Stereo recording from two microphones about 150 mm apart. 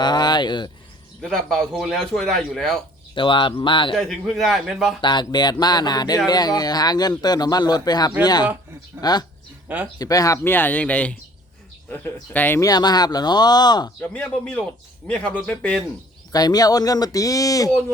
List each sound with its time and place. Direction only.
0.0 s speech: 30° left (ahead or behind)
1.2 s a man's voice: 5° left (ahead or behind)
3.2 s speech: 35° left (ahead or behind)
3.9 s a man's voice: 5° left (ahead or behind)
4.9 s speech: 30° left (ahead or behind)
9.6 s speech: 10° right (ahead or behind)
10.0 s speech: 25° left (ahead or behind)
14.1 s speech: 10° left (ahead or behind)
16.3 s speech: 25° left (ahead or behind)